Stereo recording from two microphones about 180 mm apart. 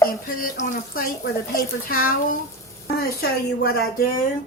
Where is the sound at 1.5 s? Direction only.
55° left (ahead or behind).